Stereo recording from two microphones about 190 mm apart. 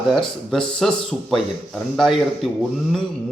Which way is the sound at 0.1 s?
5° left (ahead or behind).